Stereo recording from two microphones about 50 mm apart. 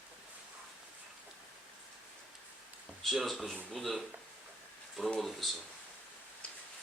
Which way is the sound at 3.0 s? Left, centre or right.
Centre.